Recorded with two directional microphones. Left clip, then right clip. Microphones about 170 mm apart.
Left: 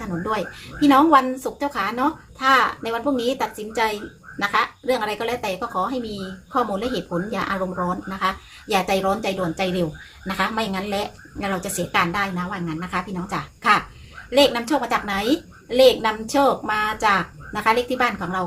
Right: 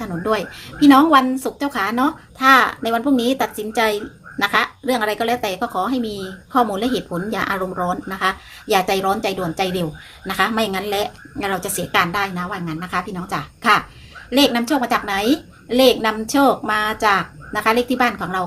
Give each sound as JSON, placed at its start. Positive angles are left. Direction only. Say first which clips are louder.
{"t": 0.0, "sound": "a woman's voice", "louder": "right 4 dB", "side_deg": -30}